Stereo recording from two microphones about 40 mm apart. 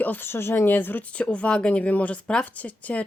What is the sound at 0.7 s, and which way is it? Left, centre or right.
Speech, left.